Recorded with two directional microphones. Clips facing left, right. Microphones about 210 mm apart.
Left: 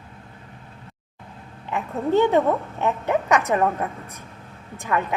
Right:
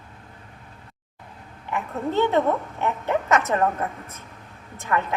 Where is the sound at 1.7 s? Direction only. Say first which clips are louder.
Left 4 dB; 15° left (ahead or behind).